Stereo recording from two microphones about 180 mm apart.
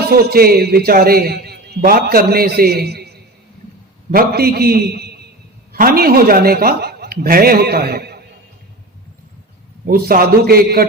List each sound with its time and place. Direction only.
0.1 s a man's voice: 60° right (ahead or behind)
4.1 s a man's voice: 55° right (ahead or behind)
9.8 s a man's voice: 55° right (ahead or behind)